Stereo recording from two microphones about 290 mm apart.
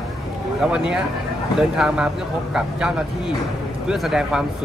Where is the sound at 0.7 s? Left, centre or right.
Centre.